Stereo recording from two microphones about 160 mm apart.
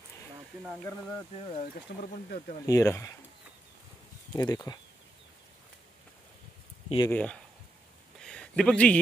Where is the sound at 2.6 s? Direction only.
20° left (ahead or behind).